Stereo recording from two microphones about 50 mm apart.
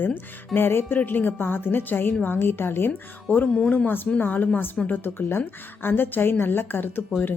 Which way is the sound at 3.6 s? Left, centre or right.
Left.